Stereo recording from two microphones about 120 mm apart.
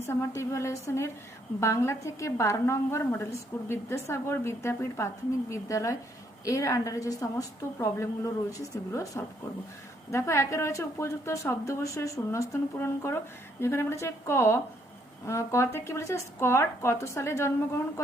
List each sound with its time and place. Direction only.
0.0 s a woman's voice: 20° left (ahead or behind)